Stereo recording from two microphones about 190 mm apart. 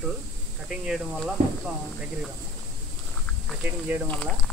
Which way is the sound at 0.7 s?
Centre (ahead or behind).